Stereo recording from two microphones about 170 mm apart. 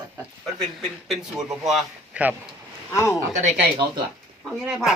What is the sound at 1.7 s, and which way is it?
Speech, 5° right (ahead or behind).